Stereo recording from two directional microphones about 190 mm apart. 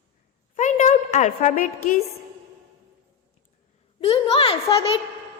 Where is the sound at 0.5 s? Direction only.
40° left (ahead or behind).